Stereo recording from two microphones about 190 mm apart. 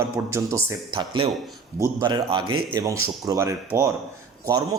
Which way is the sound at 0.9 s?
25° right (ahead or behind).